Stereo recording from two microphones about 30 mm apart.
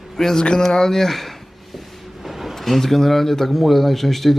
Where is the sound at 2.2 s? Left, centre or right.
Centre.